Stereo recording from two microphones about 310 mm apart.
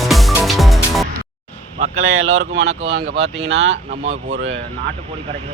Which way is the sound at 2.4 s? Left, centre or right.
Right.